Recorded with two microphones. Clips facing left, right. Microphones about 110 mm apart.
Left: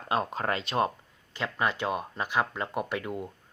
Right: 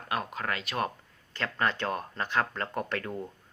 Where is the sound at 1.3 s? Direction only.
15° left (ahead or behind).